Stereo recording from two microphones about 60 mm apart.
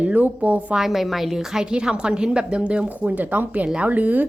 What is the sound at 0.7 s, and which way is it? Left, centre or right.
A woman's voice, centre.